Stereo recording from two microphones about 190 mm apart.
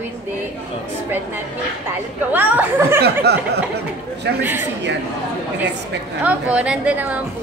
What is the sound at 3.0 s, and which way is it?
Speech, 60° right (ahead or behind).